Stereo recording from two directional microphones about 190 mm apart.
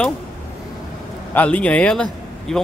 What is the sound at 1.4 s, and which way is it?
A man's voice, 5° left (ahead or behind).